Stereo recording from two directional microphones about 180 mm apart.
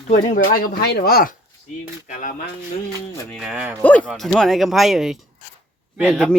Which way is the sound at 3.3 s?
5° right (ahead or behind).